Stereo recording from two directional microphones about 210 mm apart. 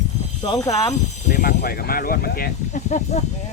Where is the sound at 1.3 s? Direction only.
45° left (ahead or behind).